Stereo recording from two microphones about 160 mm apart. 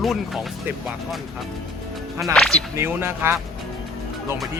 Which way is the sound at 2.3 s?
Centre (ahead or behind).